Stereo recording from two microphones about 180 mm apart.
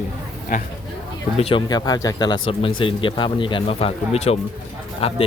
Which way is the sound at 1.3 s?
35° left (ahead or behind).